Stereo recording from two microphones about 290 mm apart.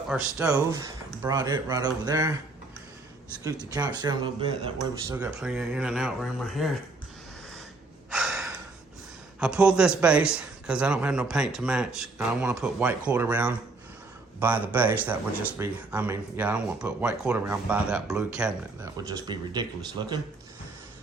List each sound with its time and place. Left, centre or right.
0.1 s a man's voice: centre
3.7 s a man's voice: centre
8.1 s gasp: centre
9.4 s a man's voice: centre
19.0 s speech: centre